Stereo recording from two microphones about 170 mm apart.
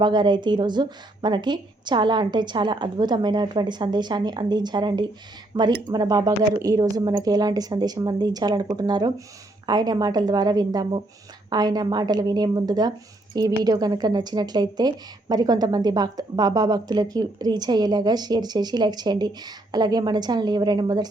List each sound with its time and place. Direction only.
0.0 s a woman's voice: 25° right (ahead or behind)